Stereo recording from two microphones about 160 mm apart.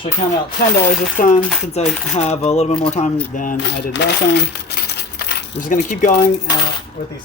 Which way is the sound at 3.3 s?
55° left (ahead or behind).